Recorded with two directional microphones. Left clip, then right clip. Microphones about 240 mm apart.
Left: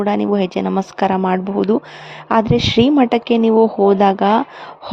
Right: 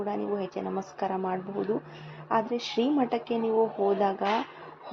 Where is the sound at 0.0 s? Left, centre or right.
Left.